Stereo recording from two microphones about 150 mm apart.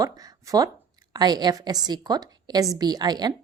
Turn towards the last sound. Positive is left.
turn(degrees=-25)  # may be behind; listen again after turning